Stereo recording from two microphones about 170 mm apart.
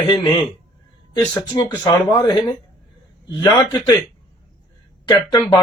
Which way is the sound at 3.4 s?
25° left (ahead or behind).